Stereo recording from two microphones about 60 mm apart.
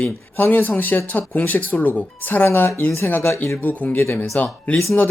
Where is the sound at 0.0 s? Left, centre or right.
Left.